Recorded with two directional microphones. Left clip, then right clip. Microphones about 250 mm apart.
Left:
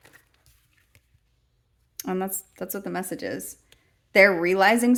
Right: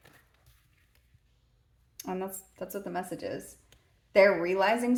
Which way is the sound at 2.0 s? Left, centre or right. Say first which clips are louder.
Left 7 dB; left.